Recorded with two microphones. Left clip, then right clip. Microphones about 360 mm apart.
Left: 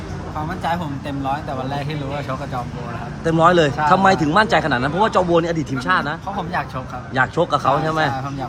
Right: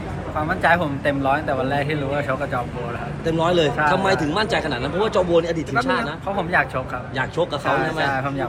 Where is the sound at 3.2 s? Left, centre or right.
Left.